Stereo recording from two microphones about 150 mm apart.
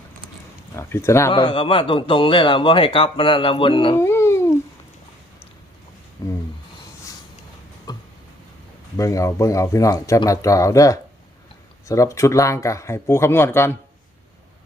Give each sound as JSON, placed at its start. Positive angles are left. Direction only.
{"t": 0.8, "sound": "speech", "side_deg": 15}
{"t": 1.3, "sound": "speech", "side_deg": 35}
{"t": 3.9, "sound": "dog", "side_deg": 20}
{"t": 6.2, "sound": "speech", "side_deg": 20}
{"t": 7.9, "sound": "a sound", "side_deg": 25}
{"t": 9.0, "sound": "speech", "side_deg": 20}